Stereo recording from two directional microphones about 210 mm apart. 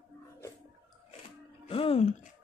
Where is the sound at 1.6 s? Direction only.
25° left (ahead or behind).